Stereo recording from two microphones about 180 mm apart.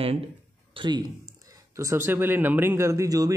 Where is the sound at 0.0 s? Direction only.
35° right (ahead or behind).